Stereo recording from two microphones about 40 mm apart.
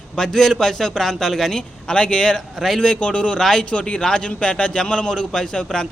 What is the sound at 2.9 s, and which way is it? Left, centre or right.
Speech, left.